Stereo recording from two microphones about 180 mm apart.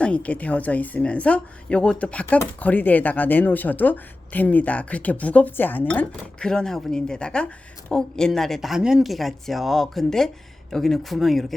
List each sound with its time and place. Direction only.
0.0 s a woman's voice: 5° left (ahead or behind)